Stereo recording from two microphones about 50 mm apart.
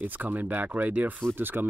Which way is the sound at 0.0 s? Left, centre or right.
Right.